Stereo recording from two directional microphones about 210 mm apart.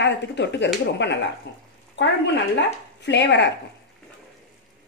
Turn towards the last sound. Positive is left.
turn(degrees=55)  # may be behind; listen again after turning